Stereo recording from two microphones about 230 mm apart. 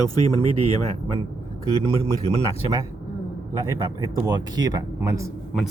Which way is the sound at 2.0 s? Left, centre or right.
Centre.